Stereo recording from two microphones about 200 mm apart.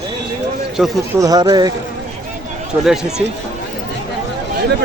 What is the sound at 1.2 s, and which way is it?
Speech, 20° right (ahead or behind).